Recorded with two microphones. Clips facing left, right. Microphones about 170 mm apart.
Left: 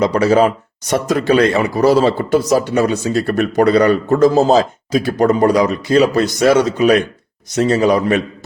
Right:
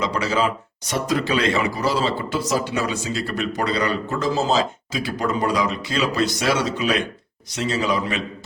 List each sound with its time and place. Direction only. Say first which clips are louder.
0.0 s speech: left 10 dB; 45° left (ahead or behind)